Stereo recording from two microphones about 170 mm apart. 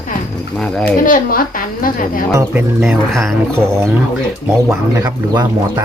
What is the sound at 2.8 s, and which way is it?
Speech, centre (ahead or behind).